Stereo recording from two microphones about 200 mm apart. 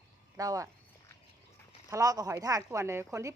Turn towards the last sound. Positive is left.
turn(degrees=-15)  # may be behind; listen again after turning